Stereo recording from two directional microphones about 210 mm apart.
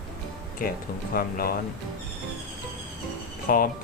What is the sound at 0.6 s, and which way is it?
Speech, 40° left (ahead or behind).